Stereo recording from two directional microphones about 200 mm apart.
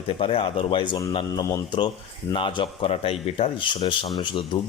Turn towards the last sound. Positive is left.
turn(degrees=25)  # may be behind; listen again after turning